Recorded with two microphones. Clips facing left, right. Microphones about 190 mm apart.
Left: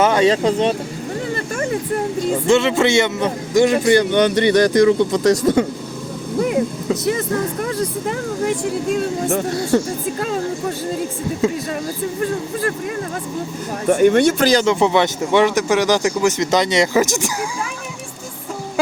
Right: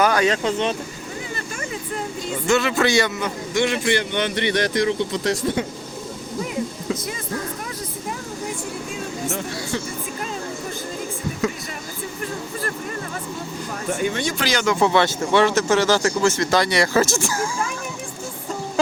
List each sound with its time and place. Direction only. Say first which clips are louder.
0.0 s speech: left 4 dB; 25° left (ahead or behind)
2.5 s a man's voice: left 3 dB; 25° left (ahead or behind); by 5.6 s 45° left (ahead or behind)
7.6 s speech: left 10 dB; 70° left (ahead or behind)
11.4 s speech: left 6 dB; 25° left (ahead or behind)
13.9 s speech: left 12 dB; 60° left (ahead or behind)
14.6 s speech: left 3 dB; 20° left (ahead or behind)